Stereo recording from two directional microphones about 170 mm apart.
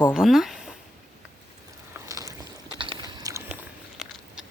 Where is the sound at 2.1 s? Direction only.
20° right (ahead or behind).